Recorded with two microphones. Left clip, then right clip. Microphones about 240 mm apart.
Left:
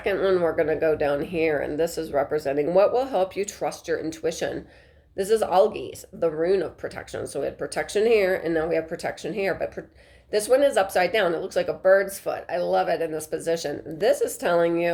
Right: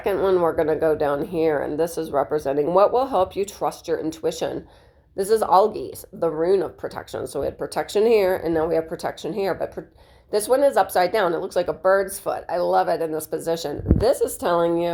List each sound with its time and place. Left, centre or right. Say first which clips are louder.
0.0 s a woman's voice: right 2 dB; centre